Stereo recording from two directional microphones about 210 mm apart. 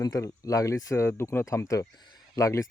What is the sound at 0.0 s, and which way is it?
Speech, 15° left (ahead or behind).